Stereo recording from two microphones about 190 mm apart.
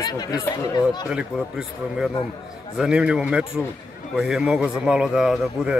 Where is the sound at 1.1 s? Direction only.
5° right (ahead or behind).